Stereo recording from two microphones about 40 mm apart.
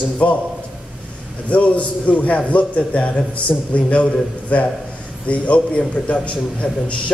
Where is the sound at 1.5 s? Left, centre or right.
Left.